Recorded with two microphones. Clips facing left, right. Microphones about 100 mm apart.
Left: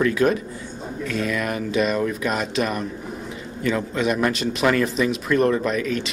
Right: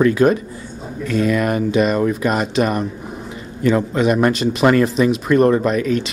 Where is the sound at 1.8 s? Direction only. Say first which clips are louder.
Right 4 dB; 45° right (ahead or behind).